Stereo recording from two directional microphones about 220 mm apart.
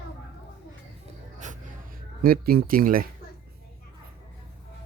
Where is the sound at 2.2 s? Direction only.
45° right (ahead or behind).